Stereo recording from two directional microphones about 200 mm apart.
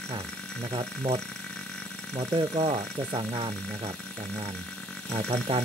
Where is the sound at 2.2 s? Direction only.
15° right (ahead or behind).